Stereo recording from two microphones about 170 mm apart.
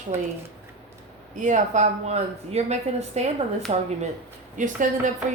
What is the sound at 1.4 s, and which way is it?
A woman's voice, 45° right (ahead or behind).